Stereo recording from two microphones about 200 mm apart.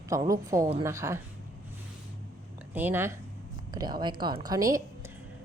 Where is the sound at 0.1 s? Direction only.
15° right (ahead or behind).